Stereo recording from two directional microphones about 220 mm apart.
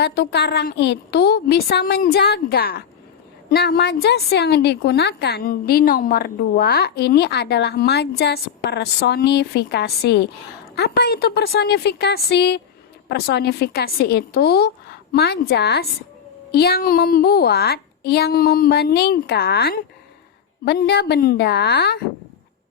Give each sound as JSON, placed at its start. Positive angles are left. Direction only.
{"t": 0.0, "sound": "a woman's voice", "side_deg": 45}